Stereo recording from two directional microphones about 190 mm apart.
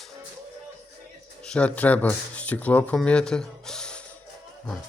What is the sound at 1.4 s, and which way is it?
Speech, 5° left (ahead or behind).